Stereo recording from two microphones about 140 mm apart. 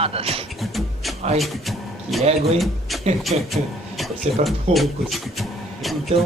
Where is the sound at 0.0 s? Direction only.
45° right (ahead or behind).